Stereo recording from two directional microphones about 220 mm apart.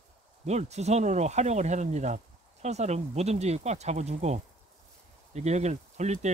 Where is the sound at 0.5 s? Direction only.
30° right (ahead or behind).